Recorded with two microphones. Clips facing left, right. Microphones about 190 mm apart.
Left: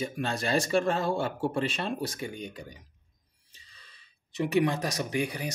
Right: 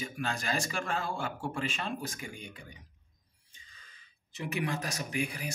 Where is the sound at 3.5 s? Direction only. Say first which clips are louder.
Left 1 dB; 35° left (ahead or behind).